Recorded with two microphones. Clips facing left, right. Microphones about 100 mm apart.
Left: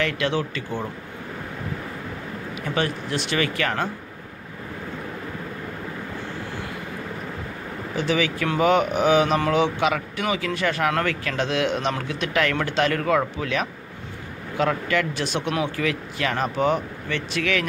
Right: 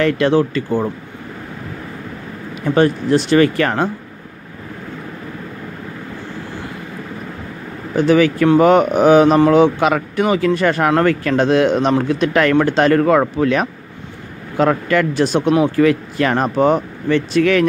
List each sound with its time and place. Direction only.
0.0 s speech: 40° right (ahead or behind)
2.6 s speech: 40° right (ahead or behind)
7.9 s speech: 45° right (ahead or behind)